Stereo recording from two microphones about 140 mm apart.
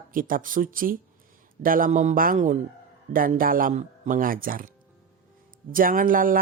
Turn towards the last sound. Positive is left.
turn(degrees=-85)